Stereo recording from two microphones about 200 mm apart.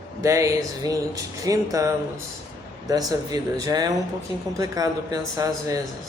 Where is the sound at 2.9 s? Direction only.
20° right (ahead or behind).